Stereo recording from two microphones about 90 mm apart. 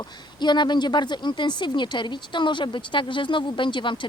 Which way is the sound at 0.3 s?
55° left (ahead or behind).